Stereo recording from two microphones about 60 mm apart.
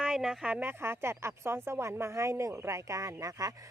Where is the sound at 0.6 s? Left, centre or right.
Right.